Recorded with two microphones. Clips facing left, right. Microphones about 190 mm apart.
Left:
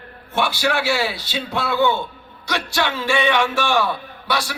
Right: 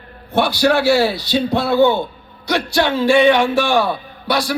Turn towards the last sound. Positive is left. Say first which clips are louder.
# right 6 dB
turn(degrees=-35)  # may be behind; listen again after turning